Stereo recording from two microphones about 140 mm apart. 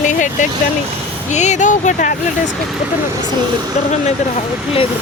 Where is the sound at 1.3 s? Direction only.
60° left (ahead or behind).